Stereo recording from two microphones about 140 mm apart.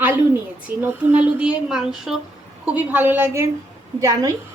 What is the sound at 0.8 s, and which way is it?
A woman's voice, 10° right (ahead or behind).